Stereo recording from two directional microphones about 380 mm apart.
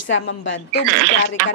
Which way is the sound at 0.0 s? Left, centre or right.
Left.